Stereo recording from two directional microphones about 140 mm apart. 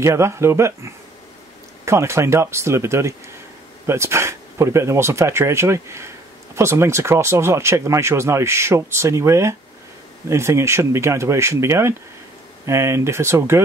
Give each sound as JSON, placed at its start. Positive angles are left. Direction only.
{"t": 0.0, "sound": "speech", "side_deg": -20}